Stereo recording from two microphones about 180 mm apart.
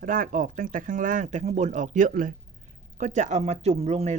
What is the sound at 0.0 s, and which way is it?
A woman's voice, 50° right (ahead or behind).